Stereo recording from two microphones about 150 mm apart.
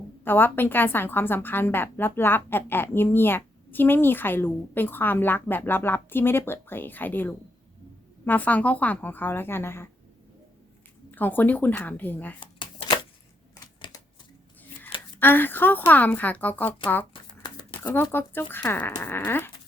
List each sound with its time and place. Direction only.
0.3 s a woman's voice: 15° left (ahead or behind)
11.1 s a woman's voice: 10° left (ahead or behind)
13.8 s typewriter: 30° left (ahead or behind)
15.2 s a woman's voice: 15° left (ahead or behind)
17.4 s a sound: 30° left (ahead or behind)
18.1 s a woman's voice: 15° left (ahead or behind)